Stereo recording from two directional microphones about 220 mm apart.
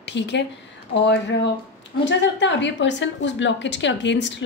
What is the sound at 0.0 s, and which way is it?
A woman's voice, 50° left (ahead or behind).